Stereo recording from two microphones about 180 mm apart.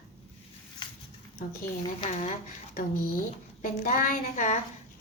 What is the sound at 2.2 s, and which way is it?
Speech, 45° left (ahead or behind).